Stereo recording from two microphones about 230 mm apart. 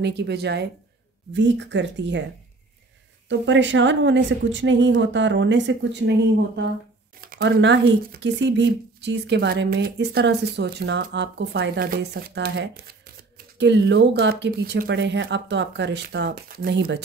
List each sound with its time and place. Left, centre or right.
0.0 s speech: right
3.3 s speech: right